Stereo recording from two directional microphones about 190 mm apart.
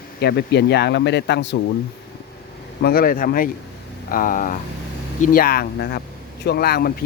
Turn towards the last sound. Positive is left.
turn(degrees=55)  # may be behind; listen again after turning